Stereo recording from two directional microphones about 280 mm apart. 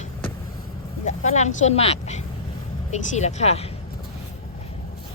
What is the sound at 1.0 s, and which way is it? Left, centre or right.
Speech, left.